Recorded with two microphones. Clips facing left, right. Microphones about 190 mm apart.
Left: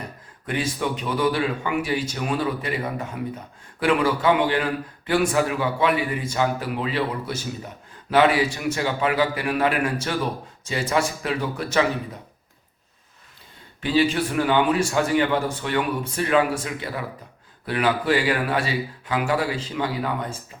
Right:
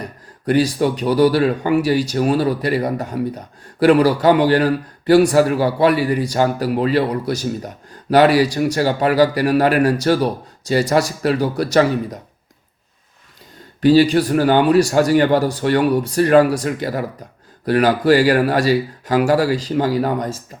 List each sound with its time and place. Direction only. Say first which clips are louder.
0.4 s speech: right 10 dB; 40° right (ahead or behind)
13.8 s speech: right 9 dB; 40° right (ahead or behind)